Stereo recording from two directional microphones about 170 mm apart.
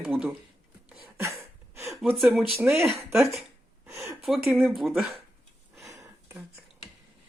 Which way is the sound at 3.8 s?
15° right (ahead or behind).